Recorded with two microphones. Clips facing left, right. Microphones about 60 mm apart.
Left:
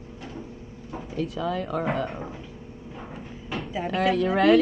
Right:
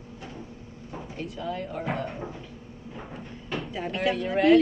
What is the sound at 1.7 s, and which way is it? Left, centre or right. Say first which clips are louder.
Speech: left 6 dB; left.